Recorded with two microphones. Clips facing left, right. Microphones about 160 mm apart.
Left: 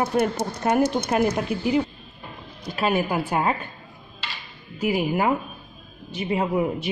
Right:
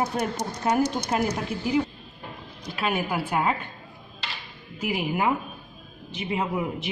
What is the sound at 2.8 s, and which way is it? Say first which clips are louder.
Speech: left 4 dB; 40° left (ahead or behind).